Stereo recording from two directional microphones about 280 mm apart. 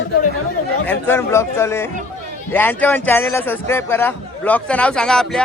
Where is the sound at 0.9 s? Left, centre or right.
Centre.